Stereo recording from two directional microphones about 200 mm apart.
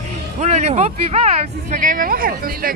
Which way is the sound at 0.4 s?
35° right (ahead or behind).